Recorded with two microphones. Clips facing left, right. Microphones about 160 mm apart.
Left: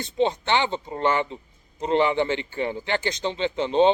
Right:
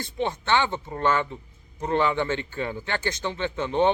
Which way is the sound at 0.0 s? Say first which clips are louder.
Left 5 dB; 20° left (ahead or behind).